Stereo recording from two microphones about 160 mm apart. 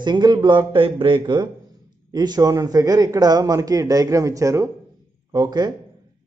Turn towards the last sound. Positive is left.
turn(degrees=-25)  # may be behind; listen again after turning